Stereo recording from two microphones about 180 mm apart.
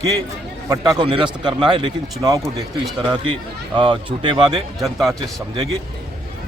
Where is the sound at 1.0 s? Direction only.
30° right (ahead or behind).